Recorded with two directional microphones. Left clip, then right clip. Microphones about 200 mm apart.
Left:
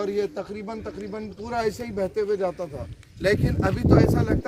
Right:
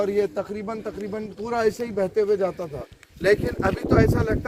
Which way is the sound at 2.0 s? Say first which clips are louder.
Right 3 dB; 50° left (ahead or behind).